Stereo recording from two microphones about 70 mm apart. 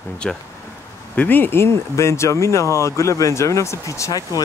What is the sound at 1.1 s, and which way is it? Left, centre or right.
Speech, left.